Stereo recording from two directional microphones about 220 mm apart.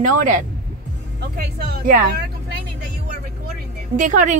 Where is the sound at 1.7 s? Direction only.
45° right (ahead or behind).